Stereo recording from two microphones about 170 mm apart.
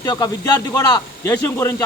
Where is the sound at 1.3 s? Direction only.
10° left (ahead or behind).